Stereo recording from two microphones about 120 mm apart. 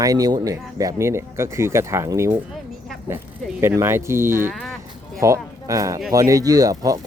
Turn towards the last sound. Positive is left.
turn(degrees=-30)  # may be behind; listen again after turning